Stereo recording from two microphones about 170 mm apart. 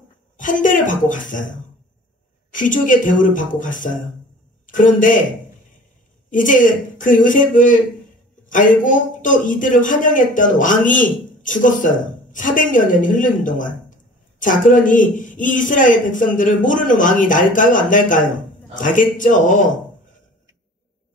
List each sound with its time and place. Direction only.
0.4 s speech: 50° left (ahead or behind)
2.5 s speech: 50° left (ahead or behind)
6.3 s speech: 50° left (ahead or behind)